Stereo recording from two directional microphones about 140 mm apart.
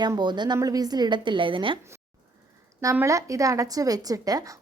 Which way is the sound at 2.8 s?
20° right (ahead or behind).